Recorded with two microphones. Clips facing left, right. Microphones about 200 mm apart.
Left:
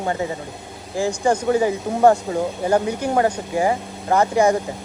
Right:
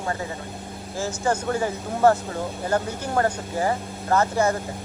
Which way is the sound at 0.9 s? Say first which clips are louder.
Left 5 dB; 15° left (ahead or behind).